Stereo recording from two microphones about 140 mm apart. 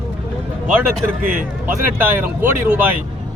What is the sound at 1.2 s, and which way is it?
Speech, 90° right.